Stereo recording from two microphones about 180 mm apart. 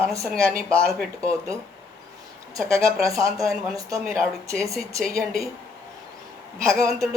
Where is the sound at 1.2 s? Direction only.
15° right (ahead or behind).